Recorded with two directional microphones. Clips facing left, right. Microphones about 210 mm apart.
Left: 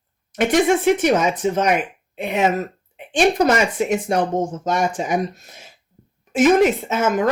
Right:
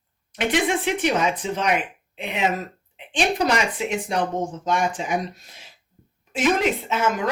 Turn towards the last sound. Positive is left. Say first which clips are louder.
# left 4 dB
turn(degrees=45)  # may be behind; listen again after turning